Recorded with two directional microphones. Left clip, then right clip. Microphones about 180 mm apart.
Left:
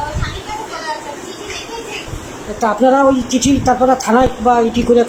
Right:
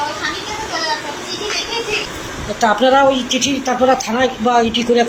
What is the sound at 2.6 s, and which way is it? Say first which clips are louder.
A woman's voice: even; 25° left (ahead or behind).